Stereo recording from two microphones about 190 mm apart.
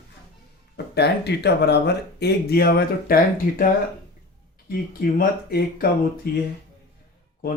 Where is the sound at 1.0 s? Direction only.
60° left (ahead or behind).